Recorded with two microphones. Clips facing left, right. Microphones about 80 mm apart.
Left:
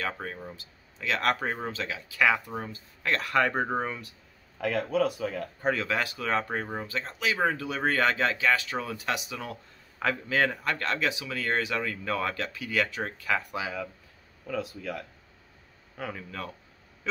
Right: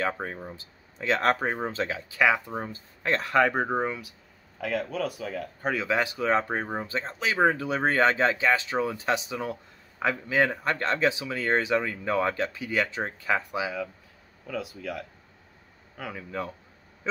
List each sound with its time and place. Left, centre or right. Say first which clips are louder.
0.0 s speech: right 4 dB; right
3.4 s speech: right 2 dB; centre
5.9 s speech: right 4 dB; centre
9.9 s speech: right 2 dB; centre
14.8 s speech: right 1 dB; centre